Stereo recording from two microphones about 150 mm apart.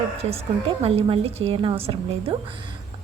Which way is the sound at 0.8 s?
40° right (ahead or behind).